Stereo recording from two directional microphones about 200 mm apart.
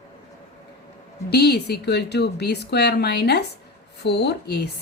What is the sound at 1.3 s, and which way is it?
Speech, 55° left (ahead or behind).